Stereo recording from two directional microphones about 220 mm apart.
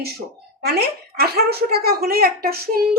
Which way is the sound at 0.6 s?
45° right (ahead or behind).